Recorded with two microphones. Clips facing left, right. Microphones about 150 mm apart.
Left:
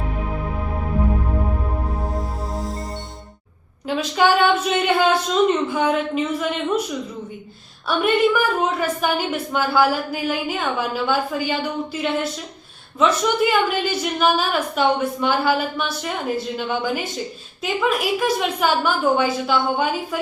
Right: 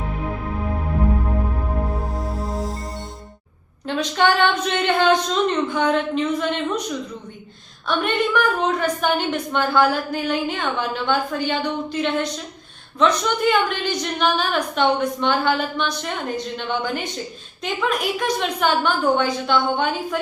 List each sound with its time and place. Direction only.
1.9 s music: centre (ahead or behind)
3.8 s a woman's voice: 5° left (ahead or behind)
7.9 s a woman's voice: 5° left (ahead or behind)